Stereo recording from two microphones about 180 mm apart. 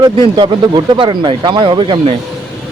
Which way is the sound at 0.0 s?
25° right (ahead or behind).